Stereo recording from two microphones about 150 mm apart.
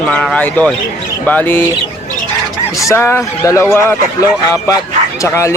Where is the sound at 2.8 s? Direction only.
20° left (ahead or behind).